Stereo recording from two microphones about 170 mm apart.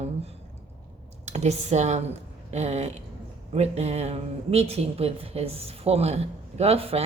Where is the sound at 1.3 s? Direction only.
40° right (ahead or behind).